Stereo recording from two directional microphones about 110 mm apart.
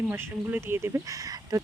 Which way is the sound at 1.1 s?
30° right (ahead or behind).